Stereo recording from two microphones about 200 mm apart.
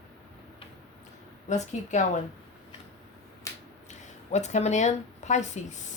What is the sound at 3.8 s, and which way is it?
Speech, 35° left (ahead or behind).